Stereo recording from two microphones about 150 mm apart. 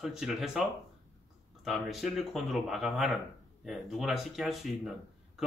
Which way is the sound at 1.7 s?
Centre (ahead or behind).